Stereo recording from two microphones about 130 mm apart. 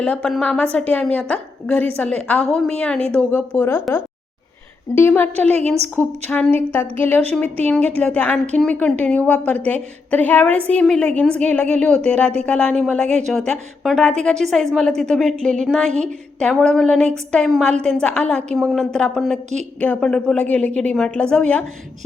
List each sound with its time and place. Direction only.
0.0 s a woman's voice: 5° left (ahead or behind)
3.6 s a woman's voice: 15° left (ahead or behind)
4.9 s a woman's voice: 15° left (ahead or behind)